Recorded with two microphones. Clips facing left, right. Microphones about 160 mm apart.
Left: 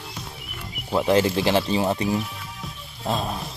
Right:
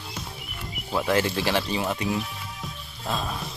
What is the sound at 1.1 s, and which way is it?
Speech, 25° left (ahead or behind).